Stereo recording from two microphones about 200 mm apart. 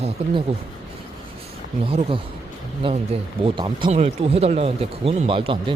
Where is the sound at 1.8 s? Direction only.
25° right (ahead or behind).